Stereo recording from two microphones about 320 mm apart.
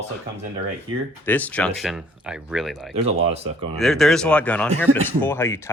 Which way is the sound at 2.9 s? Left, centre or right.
Centre.